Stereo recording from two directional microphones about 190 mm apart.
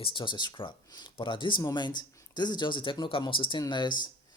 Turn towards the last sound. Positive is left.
turn(degrees=25)  # may be behind; listen again after turning